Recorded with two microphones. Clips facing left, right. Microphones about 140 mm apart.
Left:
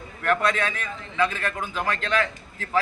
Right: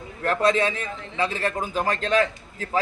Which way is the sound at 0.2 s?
30° right (ahead or behind).